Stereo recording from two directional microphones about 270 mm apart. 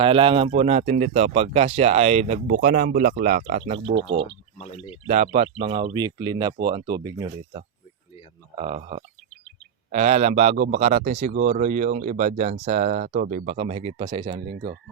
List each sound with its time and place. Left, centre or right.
0.0 s speech: centre; by 4.3 s right
4.5 s speech: centre
5.0 s speech: right
8.5 s speech: right